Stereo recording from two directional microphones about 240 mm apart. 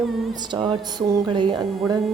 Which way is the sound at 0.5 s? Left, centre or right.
Centre.